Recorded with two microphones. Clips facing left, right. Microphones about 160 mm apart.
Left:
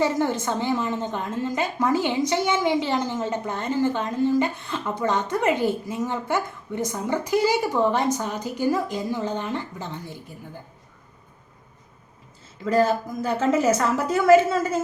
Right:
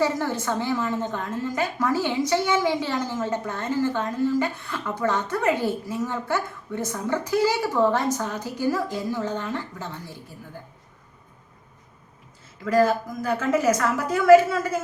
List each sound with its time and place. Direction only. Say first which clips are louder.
0.0 s a woman's voice: left 2 dB; 20° left (ahead or behind)
12.6 s a woman's voice: even; 25° left (ahead or behind)